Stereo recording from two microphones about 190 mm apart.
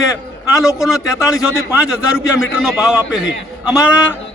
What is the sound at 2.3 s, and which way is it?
A man's voice, 5° right (ahead or behind).